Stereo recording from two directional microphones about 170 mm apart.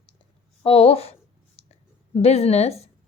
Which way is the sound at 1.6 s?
35° left (ahead or behind).